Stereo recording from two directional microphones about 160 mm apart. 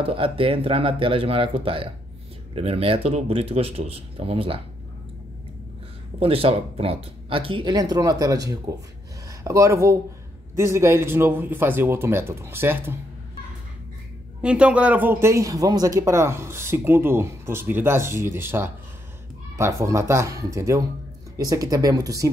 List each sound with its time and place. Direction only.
0.0 s speech: 35° right (ahead or behind)
6.1 s a man's voice: 35° right (ahead or behind); by 12.9 s 15° right (ahead or behind)
14.4 s a man's voice: 5° right (ahead or behind); by 22.3 s 20° right (ahead or behind)